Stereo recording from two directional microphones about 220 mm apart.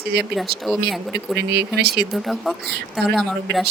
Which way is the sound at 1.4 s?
50° right (ahead or behind).